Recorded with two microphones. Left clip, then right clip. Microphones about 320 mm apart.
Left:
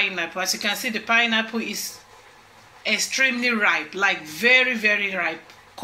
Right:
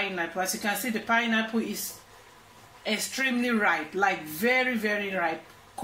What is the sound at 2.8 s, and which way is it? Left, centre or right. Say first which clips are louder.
Speech: left 8 dB; left.